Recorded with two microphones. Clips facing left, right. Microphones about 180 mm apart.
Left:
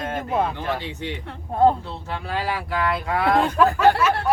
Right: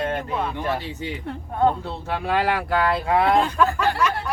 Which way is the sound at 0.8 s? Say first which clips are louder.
Even; 5° right (ahead or behind).